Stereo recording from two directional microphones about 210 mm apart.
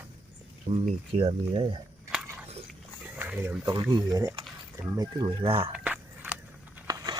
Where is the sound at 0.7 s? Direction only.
30° right (ahead or behind).